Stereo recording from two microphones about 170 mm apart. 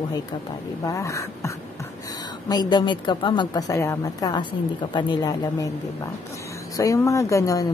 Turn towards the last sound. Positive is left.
turn(degrees=20)  # may be behind; listen again after turning